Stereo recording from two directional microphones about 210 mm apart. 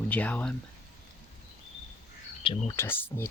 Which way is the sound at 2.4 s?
25° left (ahead or behind).